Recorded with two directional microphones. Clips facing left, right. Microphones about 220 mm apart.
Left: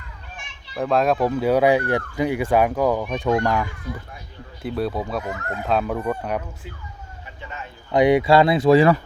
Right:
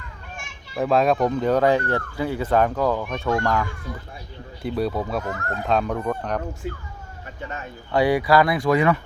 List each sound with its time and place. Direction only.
0.8 s speech: centre (ahead or behind); by 3.7 s 15° left (ahead or behind)
4.6 s speech: centre (ahead or behind)
7.9 s speech: 20° left (ahead or behind)